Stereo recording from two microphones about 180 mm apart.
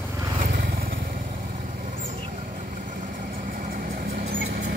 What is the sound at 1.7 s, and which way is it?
Vehicle, 45° right (ahead or behind).